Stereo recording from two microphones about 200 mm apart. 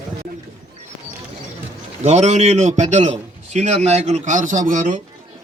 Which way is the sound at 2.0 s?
35° right (ahead or behind).